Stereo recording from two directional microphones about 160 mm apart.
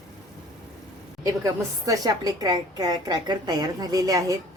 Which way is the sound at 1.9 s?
25° right (ahead or behind).